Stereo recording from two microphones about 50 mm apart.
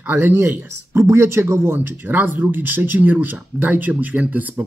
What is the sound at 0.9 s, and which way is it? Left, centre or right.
Speech, right.